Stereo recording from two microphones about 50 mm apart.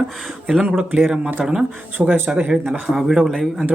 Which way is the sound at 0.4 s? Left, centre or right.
Centre.